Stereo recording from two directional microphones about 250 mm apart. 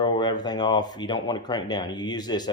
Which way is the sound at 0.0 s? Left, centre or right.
Centre.